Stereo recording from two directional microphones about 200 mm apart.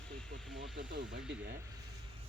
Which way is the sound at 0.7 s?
65° right (ahead or behind).